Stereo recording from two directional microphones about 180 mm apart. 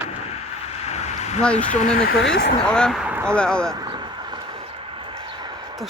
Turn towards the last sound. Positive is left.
turn(degrees=-25)  # may be behind; listen again after turning